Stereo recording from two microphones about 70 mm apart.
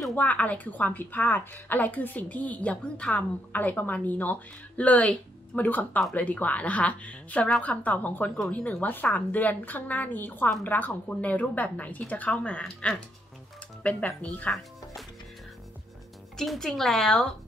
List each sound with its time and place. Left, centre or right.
0.1 s a woman's voice: left
16.3 s speech: centre